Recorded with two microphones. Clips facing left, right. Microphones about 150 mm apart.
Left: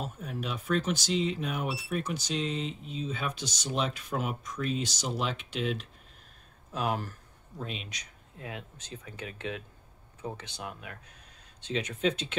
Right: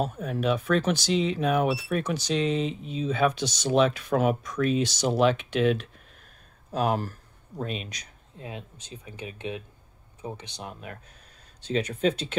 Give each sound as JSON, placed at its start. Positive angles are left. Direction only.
{"t": 0.0, "sound": "speech", "side_deg": -70}
{"t": 6.7, "sound": "speech", "side_deg": -40}
{"t": 8.4, "sound": "speech", "side_deg": -25}
{"t": 10.6, "sound": "speech", "side_deg": -35}